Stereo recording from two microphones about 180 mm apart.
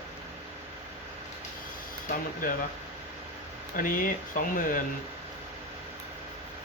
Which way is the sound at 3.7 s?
50° left (ahead or behind).